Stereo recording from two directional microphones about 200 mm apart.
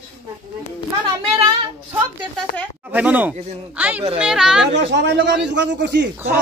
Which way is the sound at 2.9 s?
10° right (ahead or behind).